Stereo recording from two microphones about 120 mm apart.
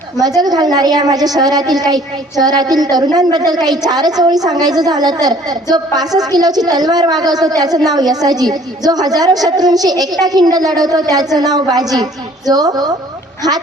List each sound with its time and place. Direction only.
0.2 s a woman's voice: 30° right (ahead or behind)